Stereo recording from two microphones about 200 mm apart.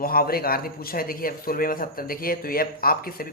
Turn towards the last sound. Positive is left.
turn(degrees=45)  # may be behind; listen again after turning